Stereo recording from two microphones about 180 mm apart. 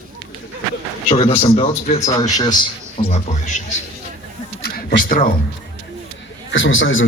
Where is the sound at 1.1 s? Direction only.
35° left (ahead or behind).